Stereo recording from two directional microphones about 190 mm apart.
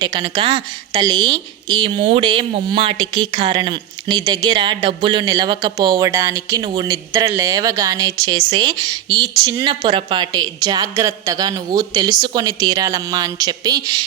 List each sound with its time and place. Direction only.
0.0 s a woman's voice: 25° right (ahead or behind)